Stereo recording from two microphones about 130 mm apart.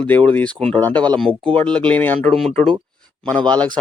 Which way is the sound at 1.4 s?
40° right (ahead or behind).